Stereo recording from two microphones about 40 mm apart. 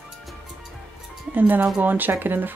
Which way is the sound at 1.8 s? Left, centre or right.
Right.